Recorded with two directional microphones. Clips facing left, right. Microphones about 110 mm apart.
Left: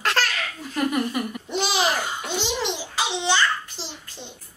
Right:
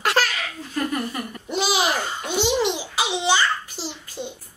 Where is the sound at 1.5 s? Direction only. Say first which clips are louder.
Right 1 dB; 5° right (ahead or behind).